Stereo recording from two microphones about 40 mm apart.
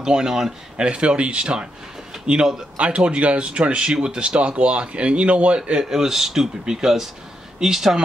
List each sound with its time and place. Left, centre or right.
0.0 s speech: centre
0.8 s speech: right
5.9 s speech: centre